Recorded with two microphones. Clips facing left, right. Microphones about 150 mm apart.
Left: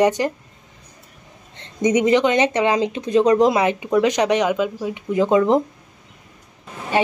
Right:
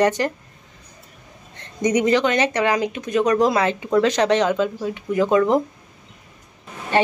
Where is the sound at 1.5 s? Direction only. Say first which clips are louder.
Left 2 dB; 25° left (ahead or behind).